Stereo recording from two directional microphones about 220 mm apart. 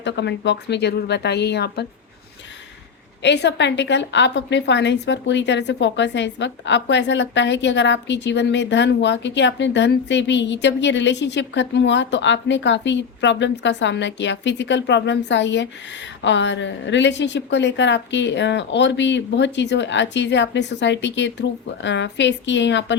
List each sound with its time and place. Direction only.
0.0 s a woman's voice: 50° left (ahead or behind)
3.2 s a woman's voice: 50° left (ahead or behind)